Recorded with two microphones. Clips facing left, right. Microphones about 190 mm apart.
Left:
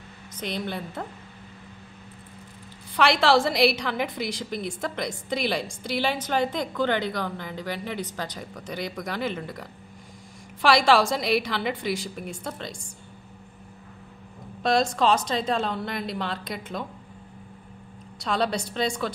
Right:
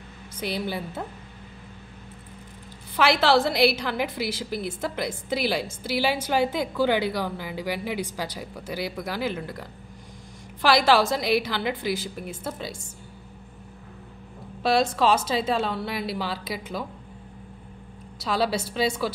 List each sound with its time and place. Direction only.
0.4 s a woman's voice: 5° right (ahead or behind)
3.0 s a woman's voice: centre (ahead or behind)
14.6 s a woman's voice: 5° right (ahead or behind)
18.2 s a woman's voice: 5° right (ahead or behind)